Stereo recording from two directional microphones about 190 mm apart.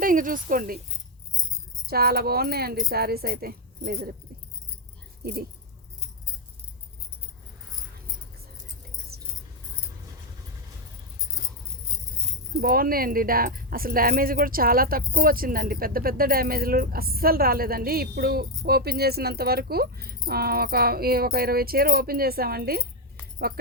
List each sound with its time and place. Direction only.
0.0 s speech: 45° right (ahead or behind)
1.9 s speech: 55° right (ahead or behind)
9.1 s keys jangling: 55° right (ahead or behind)
12.5 s speech: 50° right (ahead or behind)